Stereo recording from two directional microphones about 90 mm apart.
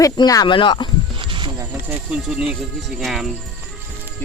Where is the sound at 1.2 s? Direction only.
70° right (ahead or behind).